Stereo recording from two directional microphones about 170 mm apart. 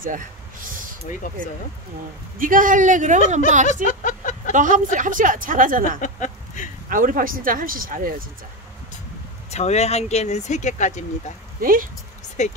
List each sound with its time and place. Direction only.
1.2 s speech: 50° left (ahead or behind)
2.3 s a woman's voice: 50° right (ahead or behind)
3.8 s a sound: 50° left (ahead or behind)
4.6 s a woman's voice: 50° right (ahead or behind)
5.9 s speech: 50° left (ahead or behind)
6.9 s speech: 55° right (ahead or behind)
9.5 s speech: 40° left (ahead or behind)
11.6 s speech: 55° right (ahead or behind)
12.4 s speech: 45° left (ahead or behind)